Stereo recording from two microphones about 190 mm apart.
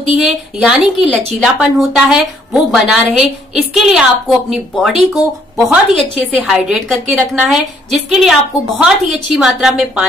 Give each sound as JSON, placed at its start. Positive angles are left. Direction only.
{"t": 0.2, "sound": "a woman's voice", "side_deg": 0}